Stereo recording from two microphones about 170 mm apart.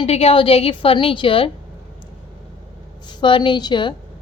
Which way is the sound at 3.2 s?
30° left (ahead or behind).